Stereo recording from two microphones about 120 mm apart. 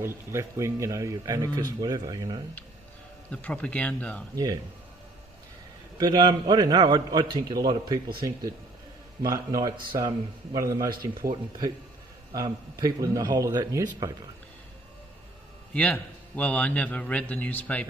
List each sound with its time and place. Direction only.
0.0 s speech: 20° right (ahead or behind)
3.3 s a man's voice: 10° left (ahead or behind)
5.9 s a man's voice: 35° right (ahead or behind)
12.4 s a man's voice: 35° right (ahead or behind)
15.7 s a man's voice: 10° left (ahead or behind)